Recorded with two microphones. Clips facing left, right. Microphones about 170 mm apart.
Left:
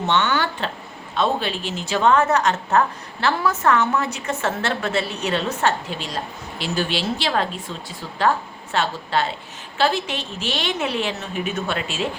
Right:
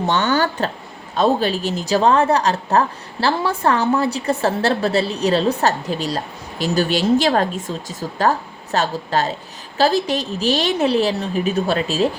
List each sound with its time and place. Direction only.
0.1 s speech: 40° right (ahead or behind)